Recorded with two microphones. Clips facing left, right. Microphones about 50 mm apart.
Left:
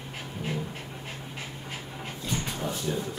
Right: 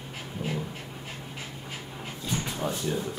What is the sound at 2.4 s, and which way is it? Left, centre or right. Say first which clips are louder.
Drawer open or close: right 1 dB; centre.